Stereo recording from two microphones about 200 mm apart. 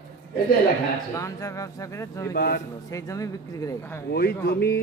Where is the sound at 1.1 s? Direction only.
15° left (ahead or behind).